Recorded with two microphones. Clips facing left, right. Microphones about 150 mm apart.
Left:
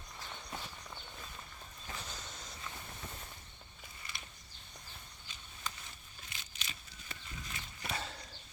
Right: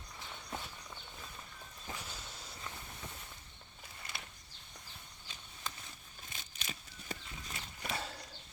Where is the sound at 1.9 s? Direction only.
10° right (ahead or behind).